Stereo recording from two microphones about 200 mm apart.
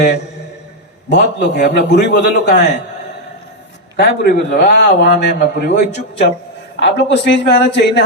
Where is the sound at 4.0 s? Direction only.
55° left (ahead or behind).